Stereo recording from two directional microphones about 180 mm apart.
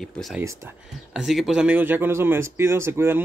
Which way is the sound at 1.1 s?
Centre (ahead or behind).